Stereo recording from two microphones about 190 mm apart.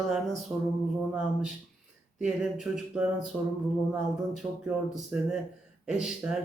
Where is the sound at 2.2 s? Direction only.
5° right (ahead or behind).